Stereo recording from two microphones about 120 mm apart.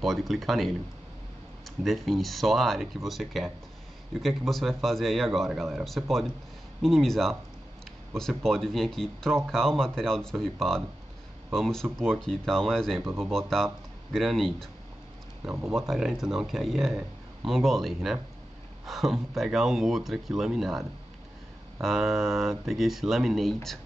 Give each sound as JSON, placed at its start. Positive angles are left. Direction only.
{"t": 0.0, "sound": "speech", "side_deg": 0}
{"t": 1.8, "sound": "speech", "side_deg": 0}
{"t": 15.4, "sound": "speech", "side_deg": -20}
{"t": 15.7, "sound": "speech", "side_deg": -5}
{"t": 21.8, "sound": "speech", "side_deg": 0}